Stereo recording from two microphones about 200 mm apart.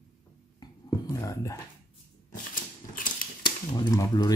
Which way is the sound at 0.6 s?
20° left (ahead or behind).